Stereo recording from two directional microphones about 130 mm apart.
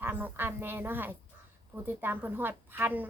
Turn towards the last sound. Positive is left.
turn(degrees=-15)  # may be behind; listen again after turning